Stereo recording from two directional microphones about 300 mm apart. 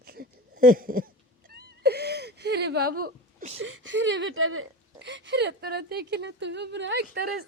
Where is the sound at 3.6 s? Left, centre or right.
Right.